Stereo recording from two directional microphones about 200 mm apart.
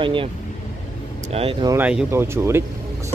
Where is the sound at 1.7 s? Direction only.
10° right (ahead or behind).